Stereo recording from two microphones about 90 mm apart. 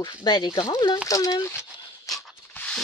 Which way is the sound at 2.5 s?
15° left (ahead or behind).